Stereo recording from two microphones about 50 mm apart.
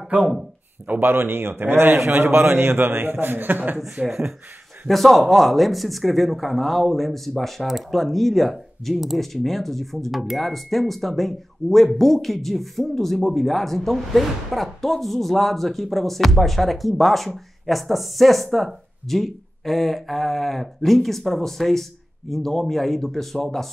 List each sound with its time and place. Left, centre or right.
1.0 s a man's voice: right
4.0 s speech: centre
4.8 s speech: centre